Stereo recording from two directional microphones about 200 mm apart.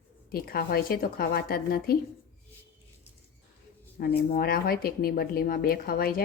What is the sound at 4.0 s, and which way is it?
Speech, 50° left (ahead or behind).